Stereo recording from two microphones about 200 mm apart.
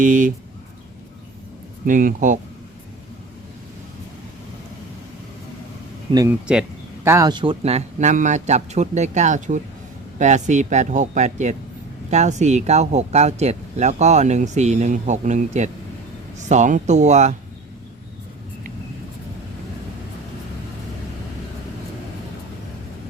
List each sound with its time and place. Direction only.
0.0 s speech: 40° right (ahead or behind)
1.9 s speech: 40° right (ahead or behind)
6.1 s speech: 25° right (ahead or behind)
6.5 s speech: 10° right (ahead or behind); by 17.3 s 35° right (ahead or behind)